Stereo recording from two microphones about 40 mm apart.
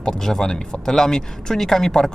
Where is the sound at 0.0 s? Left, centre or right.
Centre.